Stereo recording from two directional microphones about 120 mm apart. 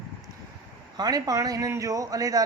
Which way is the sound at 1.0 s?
30° right (ahead or behind).